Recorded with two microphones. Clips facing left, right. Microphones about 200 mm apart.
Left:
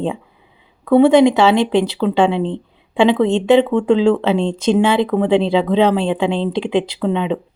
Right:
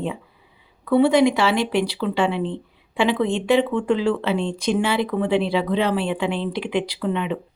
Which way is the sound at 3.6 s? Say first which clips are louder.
Left 6 dB; 75° left (ahead or behind).